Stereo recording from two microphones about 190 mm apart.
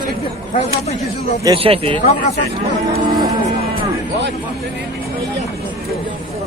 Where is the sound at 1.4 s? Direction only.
25° right (ahead or behind).